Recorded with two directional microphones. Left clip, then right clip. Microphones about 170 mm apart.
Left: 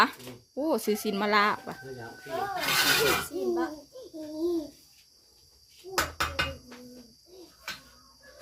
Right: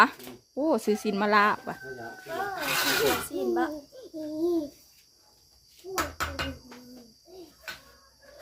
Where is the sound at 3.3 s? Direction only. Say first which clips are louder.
Right 2 dB; 45° right (ahead or behind).